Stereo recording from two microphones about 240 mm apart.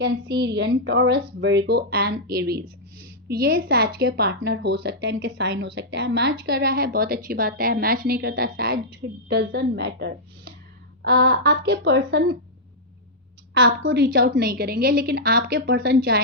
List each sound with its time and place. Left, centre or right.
0.0 s a woman's voice: right
13.5 s a woman's voice: right